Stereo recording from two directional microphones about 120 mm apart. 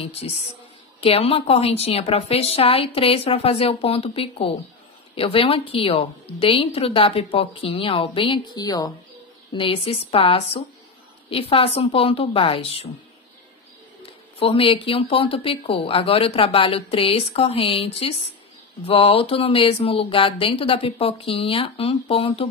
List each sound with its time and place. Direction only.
0.0 s a woman's voice: 55° left (ahead or behind); by 8.9 s 35° left (ahead or behind)
9.5 s a woman's voice: 45° left (ahead or behind)
14.4 s a woman's voice: 50° left (ahead or behind)